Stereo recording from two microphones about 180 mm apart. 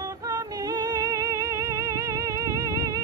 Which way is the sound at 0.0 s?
20° right (ahead or behind).